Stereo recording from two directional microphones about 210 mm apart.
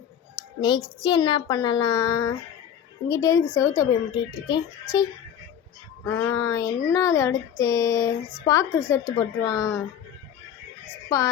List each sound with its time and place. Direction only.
0.6 s a woman's voice: 20° left (ahead or behind)
6.1 s a woman's voice: 15° left (ahead or behind)